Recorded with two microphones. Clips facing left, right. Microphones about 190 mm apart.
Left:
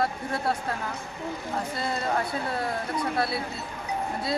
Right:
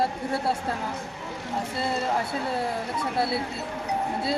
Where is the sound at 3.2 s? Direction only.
25° right (ahead or behind).